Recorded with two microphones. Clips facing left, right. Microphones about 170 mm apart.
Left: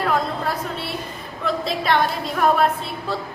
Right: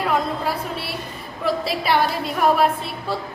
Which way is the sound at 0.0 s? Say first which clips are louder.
Even; 5° right (ahead or behind).